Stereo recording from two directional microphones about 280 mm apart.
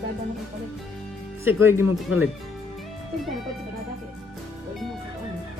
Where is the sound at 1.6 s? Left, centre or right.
Centre.